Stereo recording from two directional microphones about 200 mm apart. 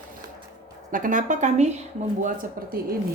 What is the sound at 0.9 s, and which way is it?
Speech, 40° right (ahead or behind).